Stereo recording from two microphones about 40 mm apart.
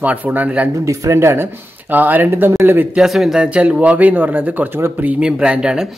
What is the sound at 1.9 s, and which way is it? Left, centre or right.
Speech, right.